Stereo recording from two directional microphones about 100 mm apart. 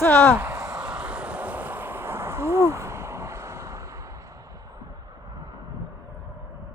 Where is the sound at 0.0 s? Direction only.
20° left (ahead or behind).